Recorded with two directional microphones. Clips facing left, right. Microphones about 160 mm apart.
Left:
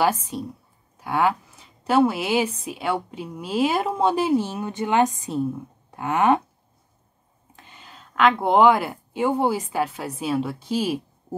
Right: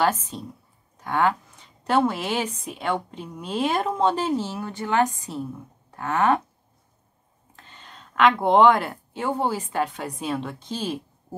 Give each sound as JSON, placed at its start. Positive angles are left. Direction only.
{"t": 0.0, "sound": "a woman's voice", "side_deg": 10}
{"t": 7.5, "sound": "speech", "side_deg": 10}